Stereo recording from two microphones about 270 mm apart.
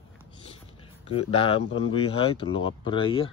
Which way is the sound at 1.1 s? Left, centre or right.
Left.